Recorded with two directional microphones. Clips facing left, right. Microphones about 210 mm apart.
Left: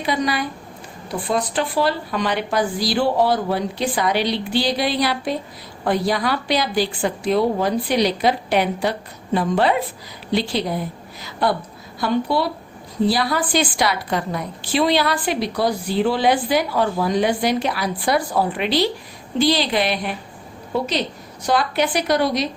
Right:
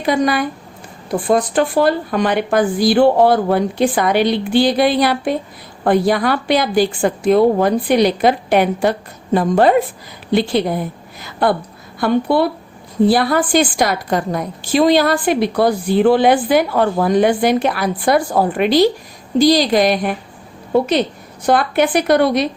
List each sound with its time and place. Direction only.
0.0 s a woman's voice: 50° right (ahead or behind)